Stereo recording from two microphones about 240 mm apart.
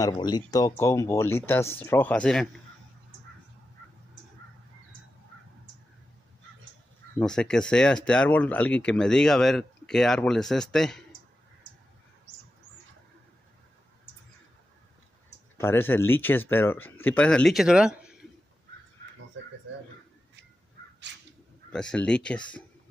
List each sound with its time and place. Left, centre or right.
0.0 s speech: centre
7.2 s speech: centre
15.5 s speech: centre
19.4 s a sound: right
21.7 s speech: centre